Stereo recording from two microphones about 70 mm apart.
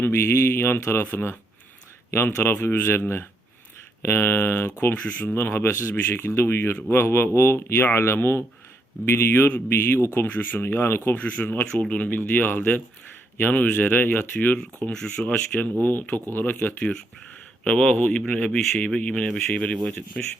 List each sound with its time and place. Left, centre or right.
0.0 s speech: left
10.2 s speech: left
11.2 s speech: left